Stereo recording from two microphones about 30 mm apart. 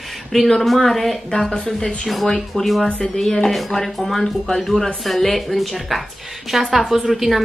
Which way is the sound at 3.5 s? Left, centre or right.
Centre.